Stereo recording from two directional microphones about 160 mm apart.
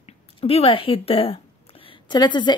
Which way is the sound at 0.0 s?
40° left (ahead or behind).